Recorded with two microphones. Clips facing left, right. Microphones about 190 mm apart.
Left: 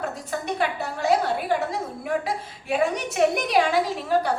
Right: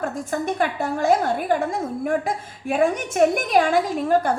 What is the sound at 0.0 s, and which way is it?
A woman's voice, 50° right (ahead or behind).